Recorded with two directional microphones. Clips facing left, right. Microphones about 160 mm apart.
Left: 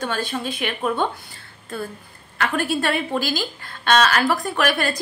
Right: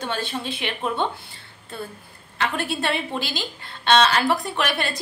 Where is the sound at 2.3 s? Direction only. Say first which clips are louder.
Left 3 dB; 25° right (ahead or behind).